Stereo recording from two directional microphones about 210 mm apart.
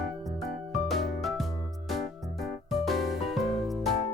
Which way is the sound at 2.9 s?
Centre (ahead or behind).